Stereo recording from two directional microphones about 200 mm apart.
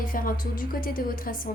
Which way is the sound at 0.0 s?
45° left (ahead or behind).